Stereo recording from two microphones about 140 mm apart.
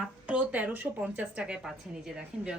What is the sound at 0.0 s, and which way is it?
A woman's voice, 10° right (ahead or behind).